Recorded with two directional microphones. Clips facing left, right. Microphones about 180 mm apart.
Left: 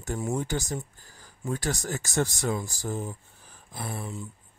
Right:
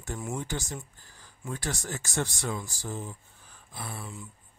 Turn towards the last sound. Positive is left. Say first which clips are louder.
# left 4 dB
turn(degrees=45)  # may be behind; listen again after turning